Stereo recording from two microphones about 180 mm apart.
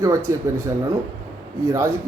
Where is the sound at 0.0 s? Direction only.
15° right (ahead or behind).